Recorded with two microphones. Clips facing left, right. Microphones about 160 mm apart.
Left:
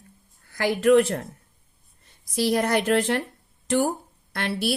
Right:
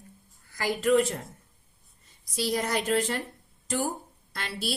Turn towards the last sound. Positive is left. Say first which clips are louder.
# left 8 dB
turn(degrees=65)  # may be behind; listen again after turning